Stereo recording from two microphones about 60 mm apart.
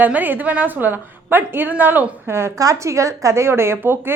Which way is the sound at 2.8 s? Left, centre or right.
Right.